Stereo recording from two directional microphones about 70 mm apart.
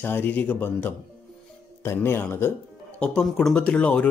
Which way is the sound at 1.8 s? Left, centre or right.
Left.